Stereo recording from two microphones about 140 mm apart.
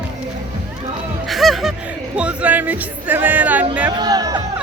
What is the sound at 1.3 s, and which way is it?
Speech, centre (ahead or behind).